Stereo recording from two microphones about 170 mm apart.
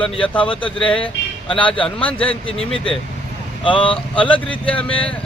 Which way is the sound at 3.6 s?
30° left (ahead or behind).